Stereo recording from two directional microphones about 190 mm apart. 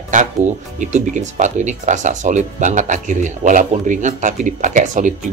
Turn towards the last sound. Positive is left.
turn(degrees=-40)  # may be behind; listen again after turning